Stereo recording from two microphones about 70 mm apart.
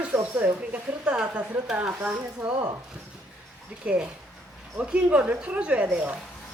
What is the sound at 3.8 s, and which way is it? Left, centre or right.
Speech, centre.